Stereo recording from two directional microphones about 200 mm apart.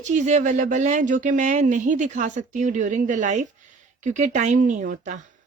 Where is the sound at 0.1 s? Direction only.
35° right (ahead or behind).